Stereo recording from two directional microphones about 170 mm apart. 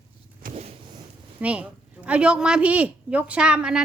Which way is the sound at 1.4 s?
5° right (ahead or behind).